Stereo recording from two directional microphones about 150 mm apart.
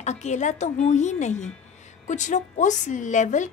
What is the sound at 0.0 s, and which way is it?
A woman's voice, 50° left (ahead or behind).